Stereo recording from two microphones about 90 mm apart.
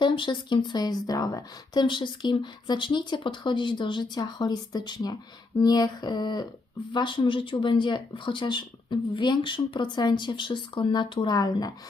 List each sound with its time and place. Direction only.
0.0 s speech: 65° left (ahead or behind)
6.9 s speech: 65° left (ahead or behind); by 11.7 s 45° left (ahead or behind)